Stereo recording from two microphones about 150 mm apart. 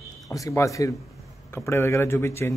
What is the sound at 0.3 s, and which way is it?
Speech, 20° left (ahead or behind).